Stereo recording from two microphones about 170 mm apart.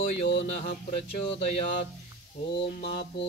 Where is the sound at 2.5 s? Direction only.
75° left (ahead or behind).